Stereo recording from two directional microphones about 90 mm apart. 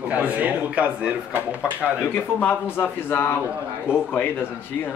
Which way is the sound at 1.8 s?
20° left (ahead or behind).